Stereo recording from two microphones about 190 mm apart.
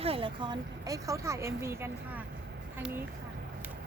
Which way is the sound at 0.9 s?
15° right (ahead or behind).